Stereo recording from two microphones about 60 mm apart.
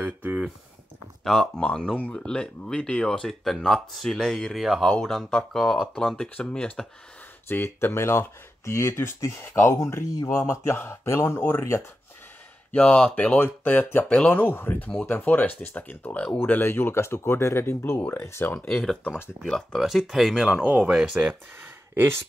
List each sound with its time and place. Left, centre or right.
0.0 s a sound: right
1.2 s speech: centre
4.8 s speech: centre
7.4 s speech: left
10.9 s speech: left
12.7 s speech: left
14.0 s speech: centre
14.3 s speech: left
19.4 s speech: centre
19.8 s speech: centre
20.6 s speech: right
20.9 s speech: centre
21.9 s speech: right